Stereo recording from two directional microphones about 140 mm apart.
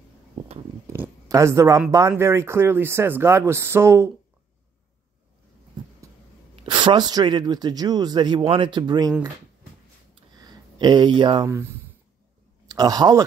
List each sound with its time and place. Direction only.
1.3 s speech: 20° right (ahead or behind)
6.6 s speech: 35° right (ahead or behind)
10.4 s speech: 30° right (ahead or behind)
11.4 s speech: 20° right (ahead or behind)